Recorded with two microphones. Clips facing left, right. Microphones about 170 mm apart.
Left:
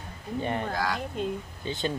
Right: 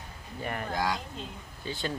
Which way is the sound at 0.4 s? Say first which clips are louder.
Left 5 dB; 25° left (ahead or behind).